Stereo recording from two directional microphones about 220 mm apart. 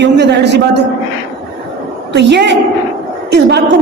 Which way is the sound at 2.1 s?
50° right (ahead or behind).